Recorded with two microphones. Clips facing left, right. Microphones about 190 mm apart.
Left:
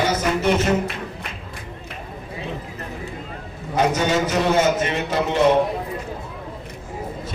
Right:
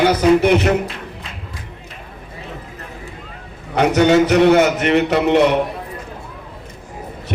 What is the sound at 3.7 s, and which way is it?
A man's voice, 65° right (ahead or behind).